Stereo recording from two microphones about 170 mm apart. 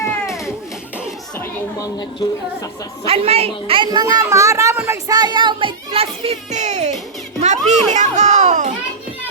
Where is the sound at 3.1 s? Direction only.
35° right (ahead or behind).